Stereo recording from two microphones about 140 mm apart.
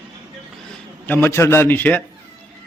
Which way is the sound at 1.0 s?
15° left (ahead or behind).